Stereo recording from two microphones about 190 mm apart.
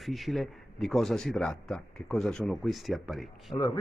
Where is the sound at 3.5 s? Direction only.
25° left (ahead or behind).